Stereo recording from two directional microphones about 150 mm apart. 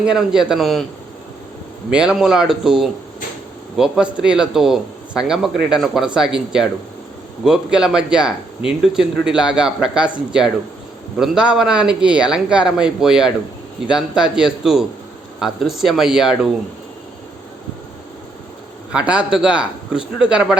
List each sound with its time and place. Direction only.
0.0 s speech: 5° right (ahead or behind)
1.9 s speech: 5° right (ahead or behind)
18.9 s speech: 5° right (ahead or behind)